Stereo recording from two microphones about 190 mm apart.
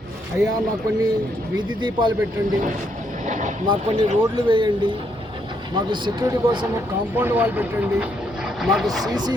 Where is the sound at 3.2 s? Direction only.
40° right (ahead or behind).